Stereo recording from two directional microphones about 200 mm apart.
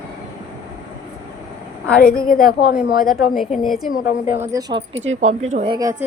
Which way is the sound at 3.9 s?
45° left (ahead or behind).